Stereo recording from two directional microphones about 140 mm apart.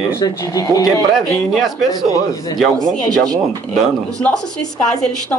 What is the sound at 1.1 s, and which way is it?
A woman's voice, centre (ahead or behind).